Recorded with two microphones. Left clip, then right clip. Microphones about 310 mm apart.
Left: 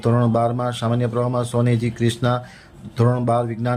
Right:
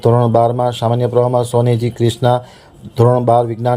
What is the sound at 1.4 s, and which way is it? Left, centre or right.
Speech, centre.